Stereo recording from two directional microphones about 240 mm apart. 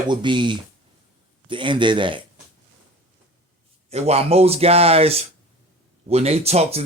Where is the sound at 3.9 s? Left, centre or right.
Right.